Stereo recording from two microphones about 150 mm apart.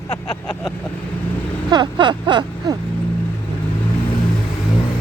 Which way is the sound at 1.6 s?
30° right (ahead or behind).